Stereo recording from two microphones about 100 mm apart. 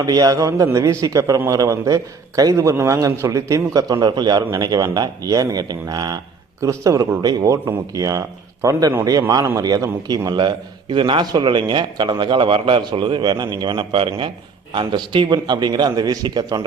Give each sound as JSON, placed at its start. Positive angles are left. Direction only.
{"t": 0.0, "sound": "a man's voice", "side_deg": -40}